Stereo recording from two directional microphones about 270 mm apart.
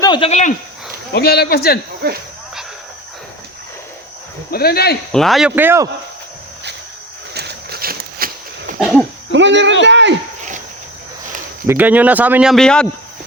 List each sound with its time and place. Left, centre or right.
0.0 s speech: centre
1.1 s speech: left
2.0 s speech: right
4.5 s speech: left
5.1 s speech: centre
7.3 s a sound: right
8.8 s a sound: centre
9.3 s speech: right
11.6 s speech: centre